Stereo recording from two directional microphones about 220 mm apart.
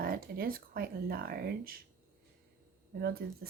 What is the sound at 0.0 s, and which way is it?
Speech, 40° right (ahead or behind).